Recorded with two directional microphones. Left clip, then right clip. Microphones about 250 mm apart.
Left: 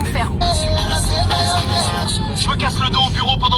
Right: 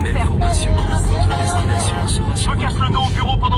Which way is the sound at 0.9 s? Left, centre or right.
Left.